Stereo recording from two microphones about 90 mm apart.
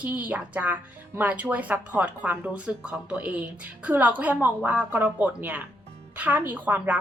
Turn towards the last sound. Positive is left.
turn(degrees=-20)  # may be behind; listen again after turning